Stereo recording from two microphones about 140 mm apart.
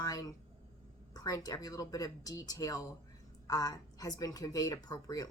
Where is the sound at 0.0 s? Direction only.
25° left (ahead or behind).